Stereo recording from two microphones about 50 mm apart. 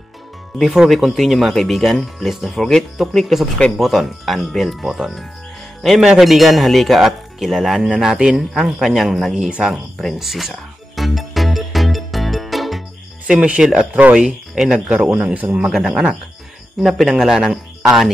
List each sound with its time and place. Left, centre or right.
0.6 s speech: centre
9.4 s speech: centre
10.1 s music: centre
13.3 s speech: right
14.1 s speech: centre
16.8 s speech: centre